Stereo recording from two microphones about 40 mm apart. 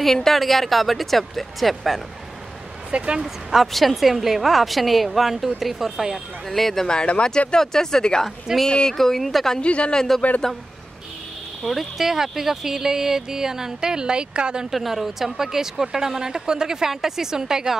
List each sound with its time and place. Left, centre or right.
0.0 s speech: centre
2.9 s speech: right
3.7 s speech: centre
6.5 s speech: centre
6.9 s speech: left
8.9 s speech: centre
9.6 s speech: left
9.9 s speech: centre
11.6 s speech: centre; by 14.7 s right
14.7 s speech: centre